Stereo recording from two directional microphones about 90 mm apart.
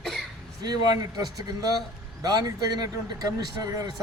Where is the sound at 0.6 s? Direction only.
45° right (ahead or behind).